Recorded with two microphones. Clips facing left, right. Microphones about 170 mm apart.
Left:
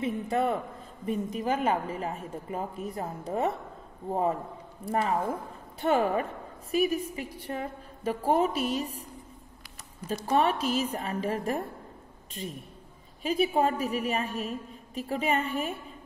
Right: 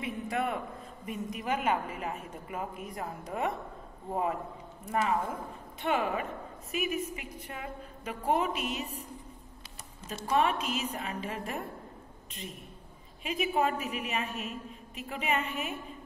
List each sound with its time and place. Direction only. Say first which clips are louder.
0.0 s a man's voice: left 5 dB; 30° left (ahead or behind)
10.2 s a woman's voice: left 2 dB; 35° left (ahead or behind)